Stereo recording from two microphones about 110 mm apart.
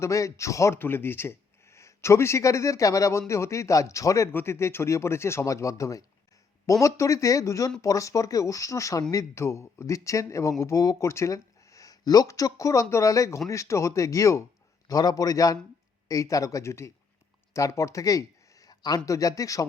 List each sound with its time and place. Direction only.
0.0 s a man's voice: 30° left (ahead or behind)